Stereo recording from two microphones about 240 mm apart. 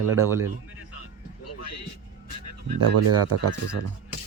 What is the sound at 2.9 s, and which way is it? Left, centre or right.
Speech, right.